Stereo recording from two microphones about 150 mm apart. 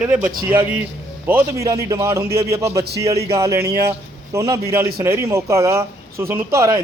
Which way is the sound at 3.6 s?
90° right.